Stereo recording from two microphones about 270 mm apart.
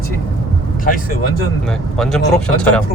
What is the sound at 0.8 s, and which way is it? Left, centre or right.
Speech, left.